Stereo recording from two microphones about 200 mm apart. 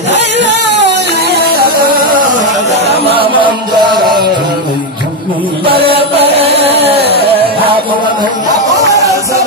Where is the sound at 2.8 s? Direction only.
25° right (ahead or behind).